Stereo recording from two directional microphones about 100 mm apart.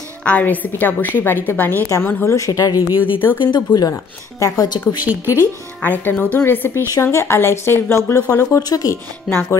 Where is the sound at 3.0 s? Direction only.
20° left (ahead or behind).